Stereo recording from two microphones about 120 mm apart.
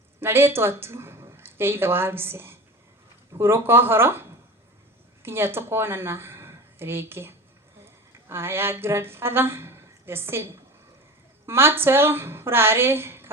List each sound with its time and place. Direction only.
0.2 s a woman's voice: 20° right (ahead or behind)